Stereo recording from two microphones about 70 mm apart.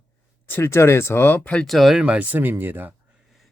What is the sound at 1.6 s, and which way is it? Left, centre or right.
Speech, centre.